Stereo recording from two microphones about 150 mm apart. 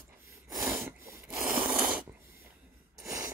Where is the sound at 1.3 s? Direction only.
Centre (ahead or behind).